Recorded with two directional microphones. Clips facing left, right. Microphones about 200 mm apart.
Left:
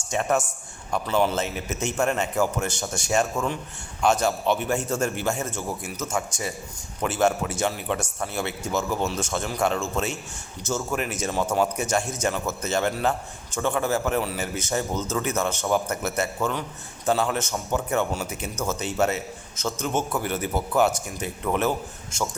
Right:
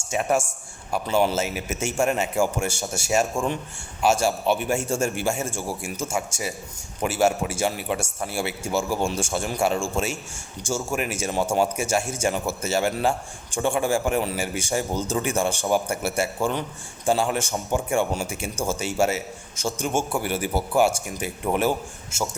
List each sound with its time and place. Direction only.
0.1 s a man's voice: 10° right (ahead or behind)
10.6 s a man's voice: 30° right (ahead or behind)
10.8 s a man's voice: 10° right (ahead or behind)
18.5 s a man's voice: 30° right (ahead or behind)
18.8 s a man's voice: 10° right (ahead or behind)